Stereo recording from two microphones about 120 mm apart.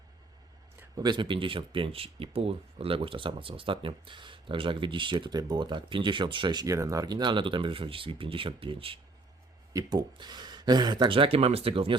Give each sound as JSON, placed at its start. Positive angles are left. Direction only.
{"t": 0.9, "sound": "speech", "side_deg": -40}
{"t": 9.7, "sound": "speech", "side_deg": -35}